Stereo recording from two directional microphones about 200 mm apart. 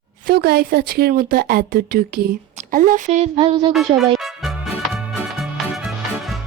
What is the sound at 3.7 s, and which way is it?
Speech, centre (ahead or behind).